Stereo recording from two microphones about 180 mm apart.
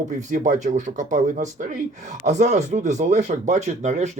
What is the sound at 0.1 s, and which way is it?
Speech, 45° right (ahead or behind).